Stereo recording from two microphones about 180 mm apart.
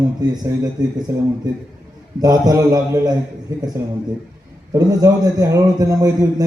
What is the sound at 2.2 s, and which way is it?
Speech, 20° right (ahead or behind).